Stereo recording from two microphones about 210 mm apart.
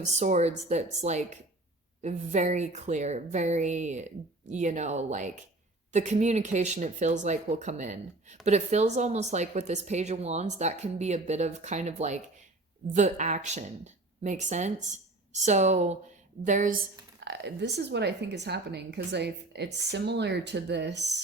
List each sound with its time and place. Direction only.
0.0 s a woman's voice: 35° right (ahead or behind)
17.2 s speech: 55° right (ahead or behind)